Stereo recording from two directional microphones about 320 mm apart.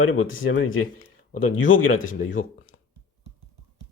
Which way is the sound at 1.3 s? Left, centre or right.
Left.